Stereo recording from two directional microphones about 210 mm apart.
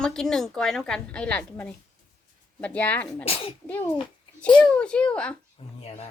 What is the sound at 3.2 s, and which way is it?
Speech, 25° left (ahead or behind).